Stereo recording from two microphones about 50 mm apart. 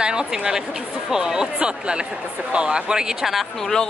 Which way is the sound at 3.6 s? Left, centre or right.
Centre.